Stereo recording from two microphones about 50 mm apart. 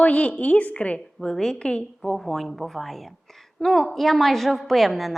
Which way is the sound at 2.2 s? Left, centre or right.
Centre.